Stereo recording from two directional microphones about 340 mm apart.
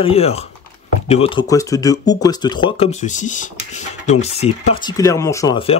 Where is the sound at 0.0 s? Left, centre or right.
Centre.